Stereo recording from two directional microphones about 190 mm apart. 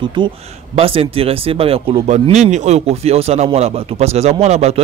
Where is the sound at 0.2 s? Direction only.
25° right (ahead or behind).